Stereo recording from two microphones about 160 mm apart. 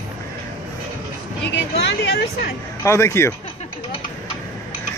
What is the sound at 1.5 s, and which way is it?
Speech, 90° left.